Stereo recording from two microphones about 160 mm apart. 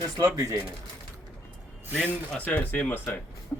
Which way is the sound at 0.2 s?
20° right (ahead or behind).